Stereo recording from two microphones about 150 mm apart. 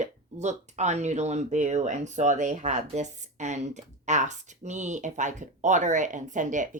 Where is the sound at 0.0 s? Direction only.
50° right (ahead or behind).